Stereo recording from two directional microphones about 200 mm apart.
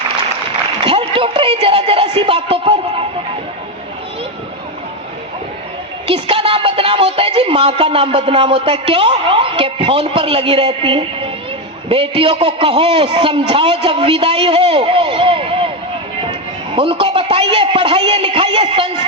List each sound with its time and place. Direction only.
0.8 s a woman's voice: 25° right (ahead or behind)
6.1 s a man's voice: 25° right (ahead or behind)
16.7 s speech: 25° right (ahead or behind)
18.6 s speech: 35° right (ahead or behind)